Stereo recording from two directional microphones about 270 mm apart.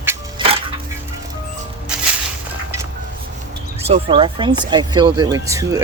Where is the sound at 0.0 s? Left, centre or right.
Centre.